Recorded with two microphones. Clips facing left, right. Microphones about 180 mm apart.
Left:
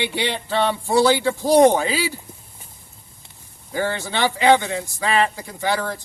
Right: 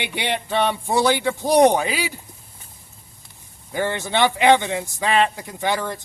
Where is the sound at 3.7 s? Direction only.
20° right (ahead or behind).